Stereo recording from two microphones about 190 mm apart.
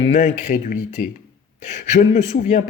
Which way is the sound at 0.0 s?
40° left (ahead or behind).